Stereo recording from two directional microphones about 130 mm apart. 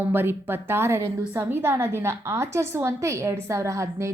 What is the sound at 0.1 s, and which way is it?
A woman's voice, 15° right (ahead or behind).